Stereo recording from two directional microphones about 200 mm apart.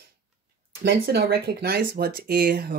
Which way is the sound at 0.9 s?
50° right (ahead or behind).